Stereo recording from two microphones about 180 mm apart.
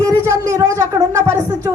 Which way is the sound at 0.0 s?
15° right (ahead or behind).